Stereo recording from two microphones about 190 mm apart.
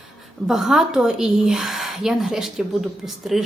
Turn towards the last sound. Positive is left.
turn(degrees=0)  # may be behind; listen again after turning